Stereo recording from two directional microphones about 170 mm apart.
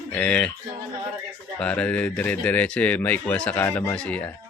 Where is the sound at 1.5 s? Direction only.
5° left (ahead or behind).